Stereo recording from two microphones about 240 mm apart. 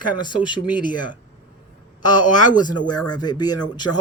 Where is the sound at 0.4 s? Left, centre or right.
Centre.